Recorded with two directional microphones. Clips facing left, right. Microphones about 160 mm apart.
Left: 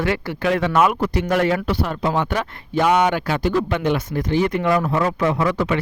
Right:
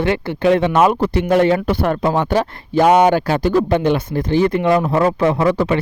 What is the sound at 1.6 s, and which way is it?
Speech, 50° right (ahead or behind).